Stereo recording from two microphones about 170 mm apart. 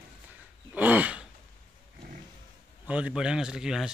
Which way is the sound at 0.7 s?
10° right (ahead or behind).